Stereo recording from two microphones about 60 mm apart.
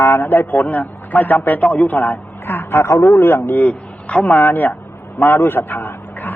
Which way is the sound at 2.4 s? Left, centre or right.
Left.